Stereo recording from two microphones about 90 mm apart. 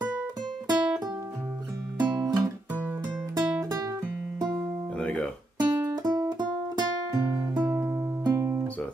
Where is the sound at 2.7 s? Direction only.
20° right (ahead or behind).